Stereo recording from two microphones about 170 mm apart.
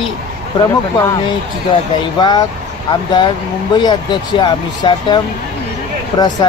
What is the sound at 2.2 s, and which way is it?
Speech, 25° left (ahead or behind).